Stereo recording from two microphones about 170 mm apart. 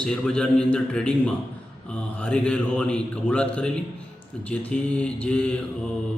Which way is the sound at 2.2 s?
5° left (ahead or behind).